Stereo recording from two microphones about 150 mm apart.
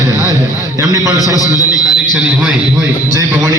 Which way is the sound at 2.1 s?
10° right (ahead or behind).